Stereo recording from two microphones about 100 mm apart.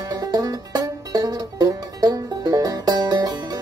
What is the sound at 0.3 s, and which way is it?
Banjo, 40° right (ahead or behind).